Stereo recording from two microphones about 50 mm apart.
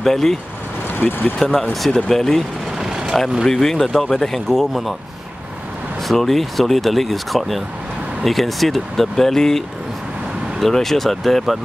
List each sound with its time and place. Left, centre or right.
0.0 s speech: centre
0.8 s speech: left
1.4 s speech: centre
2.8 s vehicle: centre
3.4 s speech: centre
6.0 s speech: centre
10.6 s speech: centre